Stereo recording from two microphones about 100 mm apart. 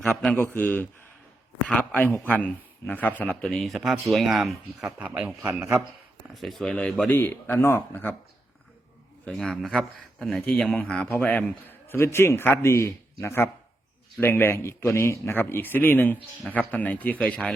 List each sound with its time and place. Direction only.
0.0 s speech: 10° left (ahead or behind)
4.9 s a man's voice: 15° right (ahead or behind)
6.3 s speech: centre (ahead or behind); by 8.1 s 20° left (ahead or behind)
9.3 s a man's voice: 5° left (ahead or behind)